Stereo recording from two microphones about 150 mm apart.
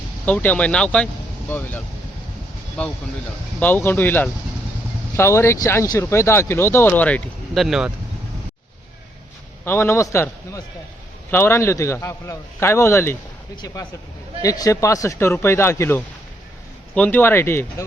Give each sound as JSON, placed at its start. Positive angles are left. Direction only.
{"t": 0.3, "sound": "speech", "side_deg": 10}
{"t": 9.6, "sound": "speech", "side_deg": 15}
{"t": 14.4, "sound": "speech", "side_deg": 25}